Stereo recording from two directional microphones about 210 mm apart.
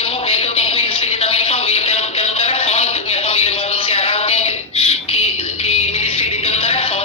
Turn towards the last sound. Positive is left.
turn(degrees=30)  # may be behind; listen again after turning